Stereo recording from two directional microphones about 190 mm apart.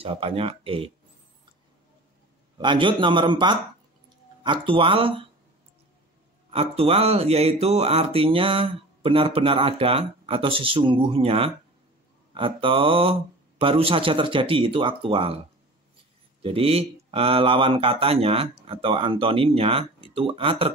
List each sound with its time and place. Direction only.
0.0 s speech: 30° right (ahead or behind)
2.5 s speech: 25° right (ahead or behind)
6.5 s speech: 30° right (ahead or behind)
16.4 s speech: 30° right (ahead or behind)